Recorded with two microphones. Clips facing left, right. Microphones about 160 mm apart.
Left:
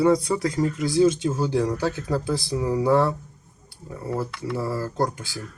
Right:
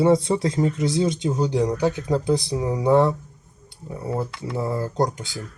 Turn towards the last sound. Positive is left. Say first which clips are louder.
# right 2 dB
turn(degrees=-20)  # may be behind; listen again after turning